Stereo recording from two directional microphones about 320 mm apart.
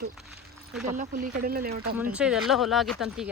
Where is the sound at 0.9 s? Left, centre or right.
Right.